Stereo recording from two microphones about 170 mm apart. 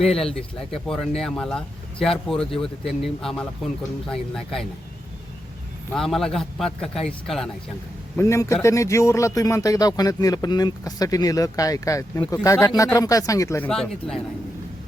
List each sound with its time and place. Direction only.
0.0 s speech: centre (ahead or behind)
5.9 s speech: centre (ahead or behind)
8.1 s a man's voice: 15° left (ahead or behind)
13.7 s speech: 5° left (ahead or behind)